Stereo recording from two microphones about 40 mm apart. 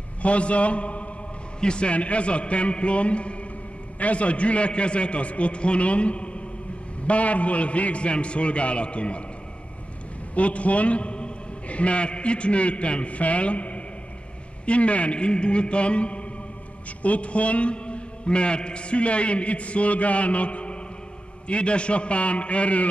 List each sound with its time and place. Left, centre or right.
0.2 s a man's voice: left
10.3 s a man's voice: left